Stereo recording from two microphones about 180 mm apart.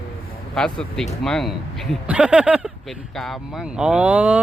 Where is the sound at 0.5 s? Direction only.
5° left (ahead or behind).